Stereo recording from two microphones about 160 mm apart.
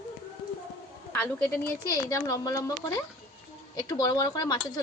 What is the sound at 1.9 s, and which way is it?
A woman's voice, 20° left (ahead or behind).